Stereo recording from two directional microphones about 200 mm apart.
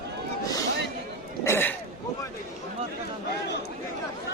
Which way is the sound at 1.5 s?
10° left (ahead or behind).